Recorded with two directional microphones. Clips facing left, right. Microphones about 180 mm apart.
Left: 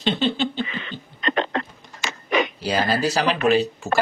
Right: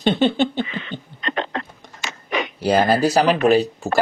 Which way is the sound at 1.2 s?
90° left.